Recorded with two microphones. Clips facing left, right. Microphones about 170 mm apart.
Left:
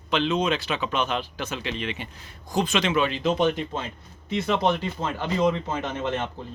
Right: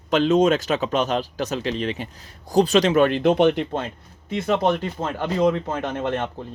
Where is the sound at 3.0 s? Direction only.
60° right (ahead or behind).